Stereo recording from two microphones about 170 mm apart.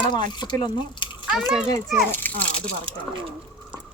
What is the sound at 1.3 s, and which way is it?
Speech, 5° right (ahead or behind).